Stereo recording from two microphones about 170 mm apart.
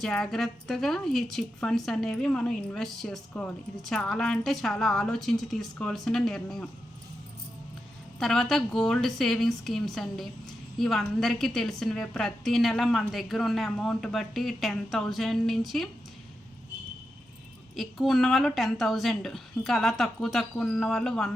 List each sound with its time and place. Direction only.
0.0 s a woman's voice: 5° left (ahead or behind)
8.2 s a woman's voice: centre (ahead or behind)
17.7 s a woman's voice: centre (ahead or behind)